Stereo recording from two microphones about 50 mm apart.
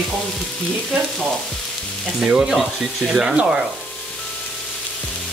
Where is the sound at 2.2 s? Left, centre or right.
Centre.